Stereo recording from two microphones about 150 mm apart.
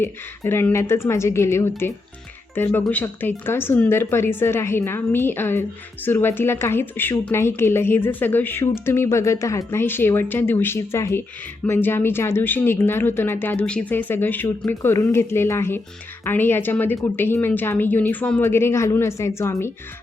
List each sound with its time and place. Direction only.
0.0 s speech: 15° left (ahead or behind)
2.9 s speech: 10° left (ahead or behind)